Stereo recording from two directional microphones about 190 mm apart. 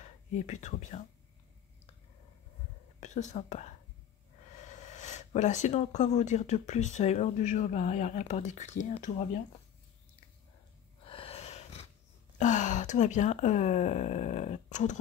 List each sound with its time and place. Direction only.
0.3 s speech: 40° left (ahead or behind)
3.0 s speech: 40° left (ahead or behind)
11.1 s a sound: 30° left (ahead or behind)
12.4 s speech: 40° left (ahead or behind)